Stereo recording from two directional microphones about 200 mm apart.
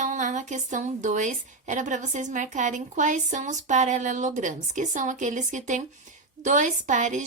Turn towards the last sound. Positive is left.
turn(degrees=-40)  # may be behind; listen again after turning